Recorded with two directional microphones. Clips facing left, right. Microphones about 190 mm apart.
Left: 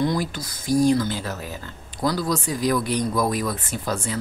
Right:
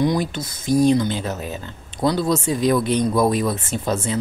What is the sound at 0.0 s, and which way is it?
Speech, 20° right (ahead or behind).